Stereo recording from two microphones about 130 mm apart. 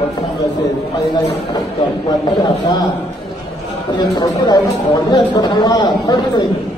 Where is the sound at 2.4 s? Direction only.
35° left (ahead or behind).